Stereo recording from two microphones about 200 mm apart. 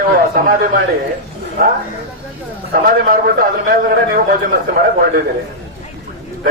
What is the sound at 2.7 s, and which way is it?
A man's voice, 45° right (ahead or behind).